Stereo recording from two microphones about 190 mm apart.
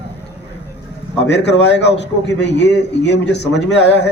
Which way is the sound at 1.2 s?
65° left (ahead or behind).